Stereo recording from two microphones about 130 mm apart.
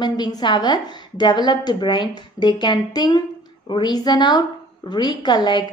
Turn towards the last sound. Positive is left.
turn(degrees=35)  # may be behind; listen again after turning